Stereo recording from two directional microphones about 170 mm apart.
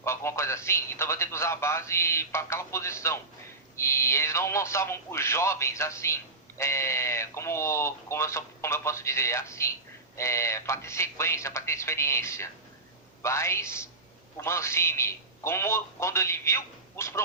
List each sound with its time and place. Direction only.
0.0 s a man's voice: 15° left (ahead or behind)